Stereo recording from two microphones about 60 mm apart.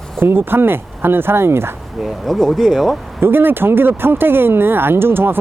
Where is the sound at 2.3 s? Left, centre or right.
Centre.